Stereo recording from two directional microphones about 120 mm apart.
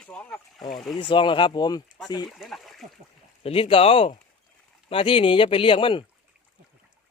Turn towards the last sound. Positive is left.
turn(degrees=45)  # may be behind; listen again after turning